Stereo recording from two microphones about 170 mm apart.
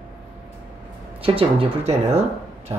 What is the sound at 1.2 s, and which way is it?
Speech, 35° right (ahead or behind).